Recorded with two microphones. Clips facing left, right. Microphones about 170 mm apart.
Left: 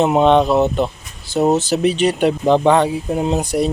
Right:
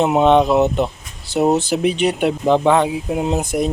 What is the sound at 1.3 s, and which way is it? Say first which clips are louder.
Speech: even; 65° right (ahead or behind).